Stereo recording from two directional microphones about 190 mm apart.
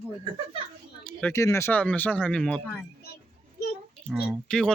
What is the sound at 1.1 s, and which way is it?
Speech, 10° left (ahead or behind).